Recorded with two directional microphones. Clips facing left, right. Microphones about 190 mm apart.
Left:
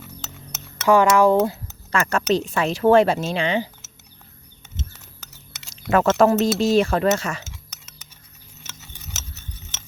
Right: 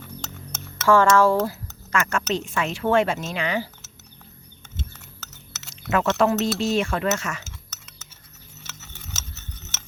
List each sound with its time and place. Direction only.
0.8 s speech: 15° left (ahead or behind)
1.9 s speech: 35° left (ahead or behind)
5.5 s chewing: 15° left (ahead or behind)
5.9 s speech: 40° left (ahead or behind)
7.7 s a sound: 15° left (ahead or behind)